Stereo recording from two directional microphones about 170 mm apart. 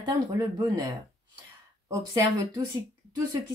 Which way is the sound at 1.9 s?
20° right (ahead or behind).